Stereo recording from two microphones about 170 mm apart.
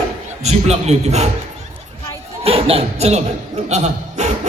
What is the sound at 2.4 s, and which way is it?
Chuckle, 35° right (ahead or behind).